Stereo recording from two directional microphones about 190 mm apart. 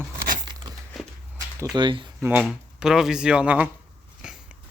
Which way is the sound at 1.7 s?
25° right (ahead or behind).